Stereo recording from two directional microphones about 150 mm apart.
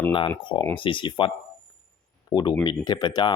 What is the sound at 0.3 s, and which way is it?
Speech, 30° left (ahead or behind).